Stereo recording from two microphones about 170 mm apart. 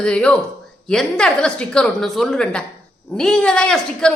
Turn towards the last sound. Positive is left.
turn(degrees=5)  # may be behind; listen again after turning